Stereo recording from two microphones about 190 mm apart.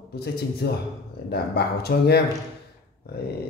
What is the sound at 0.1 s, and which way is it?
Speech, 55° left (ahead or behind).